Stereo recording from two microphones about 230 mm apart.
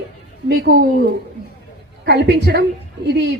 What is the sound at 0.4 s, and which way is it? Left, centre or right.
Speech, right.